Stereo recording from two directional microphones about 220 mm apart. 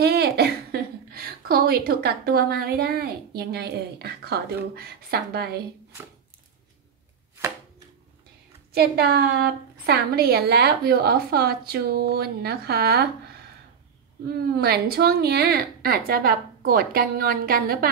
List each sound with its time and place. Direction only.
0.0 s a woman's voice: 45° right (ahead or behind)
8.7 s a woman's voice: 45° right (ahead or behind)
14.6 s a woman's voice: 45° right (ahead or behind)